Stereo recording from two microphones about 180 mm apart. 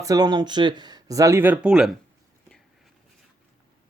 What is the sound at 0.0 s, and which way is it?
Speech, 20° right (ahead or behind).